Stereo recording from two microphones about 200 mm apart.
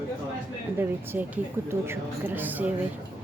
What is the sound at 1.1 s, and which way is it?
Speech, 10° right (ahead or behind).